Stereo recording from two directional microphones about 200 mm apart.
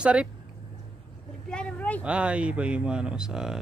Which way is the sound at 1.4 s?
5° left (ahead or behind).